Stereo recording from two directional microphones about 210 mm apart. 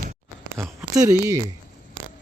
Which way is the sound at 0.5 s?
Centre (ahead or behind).